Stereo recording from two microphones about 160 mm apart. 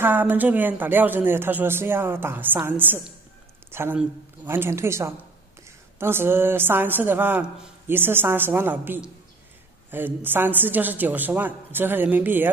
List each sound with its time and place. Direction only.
0.0 s a woman's voice: 10° right (ahead or behind)